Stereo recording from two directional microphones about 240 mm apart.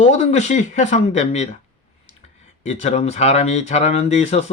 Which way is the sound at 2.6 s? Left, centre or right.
Left.